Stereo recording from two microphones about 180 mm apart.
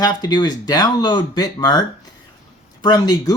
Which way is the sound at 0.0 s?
25° left (ahead or behind).